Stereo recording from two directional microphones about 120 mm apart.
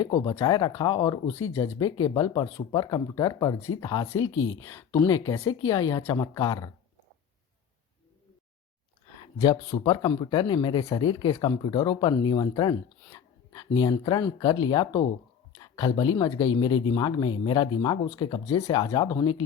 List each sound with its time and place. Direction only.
0.4 s speech: 35° left (ahead or behind)
1.3 s speech: 20° left (ahead or behind)
1.8 s speech: 30° left (ahead or behind)
9.4 s speech: 40° left (ahead or behind)
13.1 s a sound: 35° left (ahead or behind)
14.0 s speech: 35° left (ahead or behind)
18.4 s speech: 30° left (ahead or behind)